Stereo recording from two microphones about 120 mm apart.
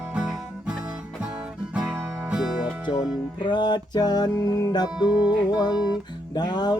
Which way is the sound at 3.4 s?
40° left (ahead or behind).